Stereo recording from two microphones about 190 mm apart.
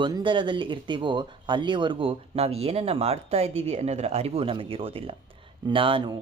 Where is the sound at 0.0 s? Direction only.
25° right (ahead or behind).